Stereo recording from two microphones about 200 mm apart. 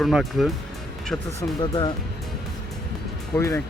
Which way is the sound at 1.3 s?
20° left (ahead or behind).